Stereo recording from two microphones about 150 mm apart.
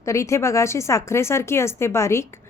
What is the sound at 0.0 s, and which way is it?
A woman's voice, 20° left (ahead or behind).